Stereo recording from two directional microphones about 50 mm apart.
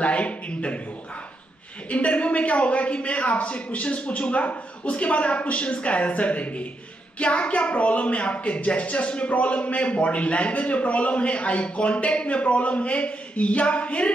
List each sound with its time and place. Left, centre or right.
0.0 s a man's voice: left
1.9 s speech: left